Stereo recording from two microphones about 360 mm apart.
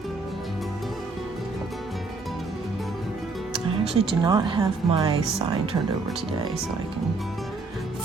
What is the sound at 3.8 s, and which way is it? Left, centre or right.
A woman's voice, centre.